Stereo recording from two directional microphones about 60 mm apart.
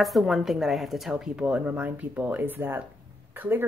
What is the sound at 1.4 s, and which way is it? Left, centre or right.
Speech, right.